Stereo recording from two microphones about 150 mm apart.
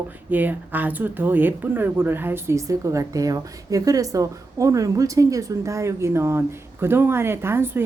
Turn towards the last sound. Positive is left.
turn(degrees=-15)  # may be behind; listen again after turning